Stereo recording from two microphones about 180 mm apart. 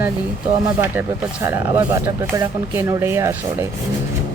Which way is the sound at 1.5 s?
15° right (ahead or behind).